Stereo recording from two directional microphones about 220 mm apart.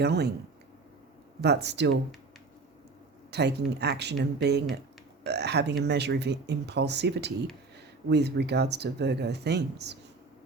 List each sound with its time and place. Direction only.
0.0 s speech: 50° right (ahead or behind)
1.4 s speech: 50° right (ahead or behind)
3.3 s speech: 50° right (ahead or behind)